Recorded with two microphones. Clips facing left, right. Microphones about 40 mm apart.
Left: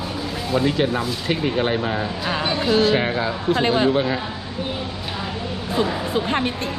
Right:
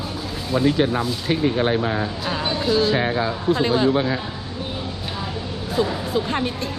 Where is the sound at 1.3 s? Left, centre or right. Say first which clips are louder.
Right 1 dB; left.